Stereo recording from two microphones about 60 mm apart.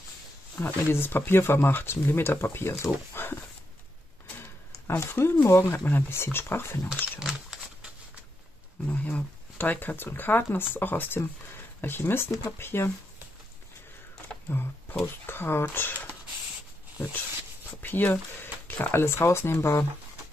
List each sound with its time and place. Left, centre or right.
0.7 s speech: left
4.4 s speech: left
7.2 s a sound: centre
8.8 s speech: left
14.5 s speech: left
17.8 s speech: left